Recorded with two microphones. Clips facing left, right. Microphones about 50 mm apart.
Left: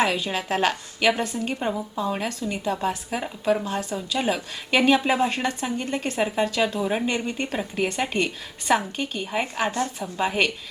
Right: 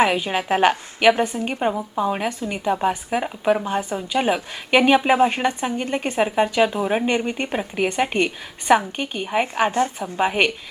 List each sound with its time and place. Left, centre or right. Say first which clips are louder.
0.0 s a woman's voice: right 4 dB; right